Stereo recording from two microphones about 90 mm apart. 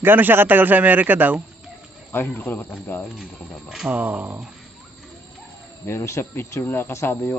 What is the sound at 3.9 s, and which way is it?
Speech, 20° right (ahead or behind).